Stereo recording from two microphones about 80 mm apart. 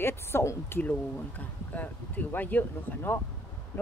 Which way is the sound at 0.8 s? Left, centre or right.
Left.